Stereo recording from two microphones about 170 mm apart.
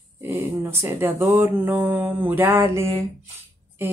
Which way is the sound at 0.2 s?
15° right (ahead or behind).